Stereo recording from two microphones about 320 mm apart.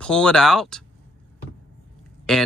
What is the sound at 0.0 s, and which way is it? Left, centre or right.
Speech, centre.